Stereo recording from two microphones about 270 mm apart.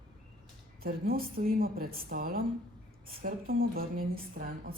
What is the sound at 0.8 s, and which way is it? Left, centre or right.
A woman's voice, right.